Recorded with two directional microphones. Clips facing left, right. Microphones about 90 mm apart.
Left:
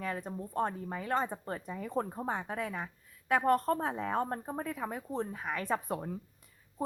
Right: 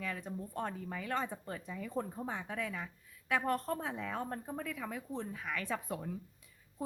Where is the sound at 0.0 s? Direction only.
40° left (ahead or behind).